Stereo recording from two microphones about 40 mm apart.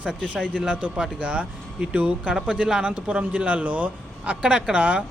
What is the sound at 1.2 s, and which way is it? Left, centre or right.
Speech, right.